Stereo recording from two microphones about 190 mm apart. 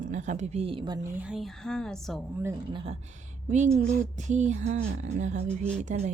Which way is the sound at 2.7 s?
30° right (ahead or behind).